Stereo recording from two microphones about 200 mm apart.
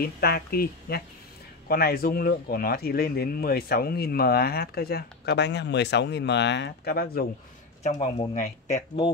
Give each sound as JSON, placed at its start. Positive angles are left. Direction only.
{"t": 0.0, "sound": "speech", "side_deg": 50}
{"t": 7.8, "sound": "speech", "side_deg": 35}